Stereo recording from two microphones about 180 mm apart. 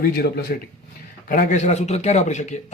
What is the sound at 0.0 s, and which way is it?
Speech, 60° left (ahead or behind).